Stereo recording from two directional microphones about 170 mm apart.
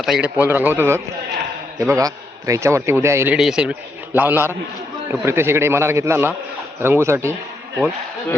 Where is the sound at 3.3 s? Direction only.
5° right (ahead or behind).